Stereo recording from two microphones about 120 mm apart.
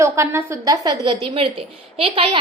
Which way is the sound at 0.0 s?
25° right (ahead or behind).